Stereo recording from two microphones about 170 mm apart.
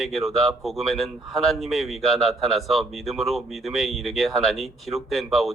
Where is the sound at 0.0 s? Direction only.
Centre (ahead or behind).